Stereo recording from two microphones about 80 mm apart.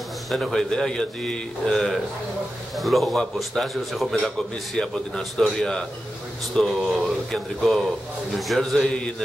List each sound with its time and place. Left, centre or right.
0.3 s a man's voice: centre